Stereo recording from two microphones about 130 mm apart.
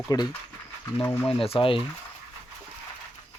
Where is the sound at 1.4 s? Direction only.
45° left (ahead or behind).